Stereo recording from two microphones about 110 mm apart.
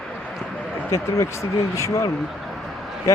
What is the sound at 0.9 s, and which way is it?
Speech, 25° left (ahead or behind).